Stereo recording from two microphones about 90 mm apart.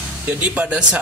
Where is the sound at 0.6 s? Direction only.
10° right (ahead or behind).